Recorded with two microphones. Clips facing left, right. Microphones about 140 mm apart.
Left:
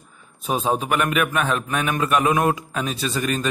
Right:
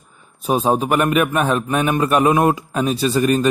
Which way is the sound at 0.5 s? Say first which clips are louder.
Right 5 dB; 45° right (ahead or behind).